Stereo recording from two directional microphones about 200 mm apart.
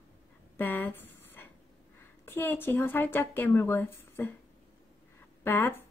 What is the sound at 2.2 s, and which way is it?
A woman's voice, 10° left (ahead or behind).